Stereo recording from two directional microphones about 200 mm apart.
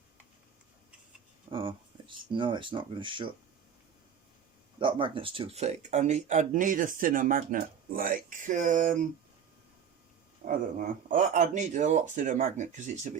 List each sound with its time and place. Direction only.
1.5 s speech: 25° right (ahead or behind)
4.8 s speech: 25° right (ahead or behind)
10.4 s speech: 40° right (ahead or behind)